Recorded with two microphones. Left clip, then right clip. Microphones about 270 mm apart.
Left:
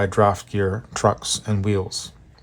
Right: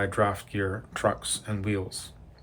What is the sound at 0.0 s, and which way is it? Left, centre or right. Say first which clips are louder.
Speech: left 8 dB; centre.